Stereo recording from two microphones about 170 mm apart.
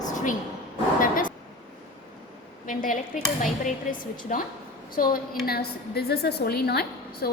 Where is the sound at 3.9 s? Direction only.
30° left (ahead or behind).